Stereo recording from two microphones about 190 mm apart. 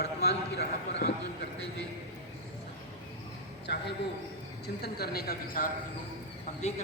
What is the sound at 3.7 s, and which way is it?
Speech, 60° left (ahead or behind).